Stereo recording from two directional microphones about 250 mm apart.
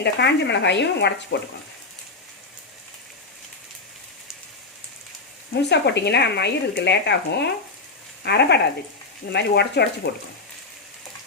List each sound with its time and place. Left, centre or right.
0.0 s speech: left
5.6 s speech: left